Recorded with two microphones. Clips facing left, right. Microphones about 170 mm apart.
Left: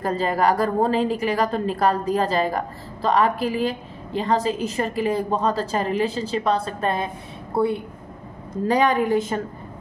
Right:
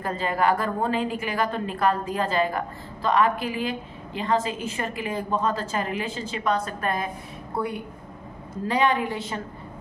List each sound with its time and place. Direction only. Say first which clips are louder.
0.0 s a woman's voice: left 3 dB; 35° left (ahead or behind)
8.6 s a woman's voice: left 4 dB; 40° left (ahead or behind)